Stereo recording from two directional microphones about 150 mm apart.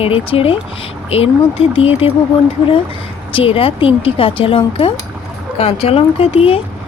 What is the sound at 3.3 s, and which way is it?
Speech, 35° left (ahead or behind).